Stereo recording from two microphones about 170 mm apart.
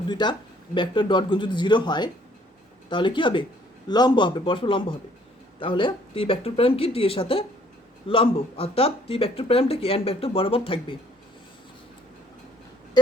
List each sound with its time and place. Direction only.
0.1 s a man's voice: 25° left (ahead or behind)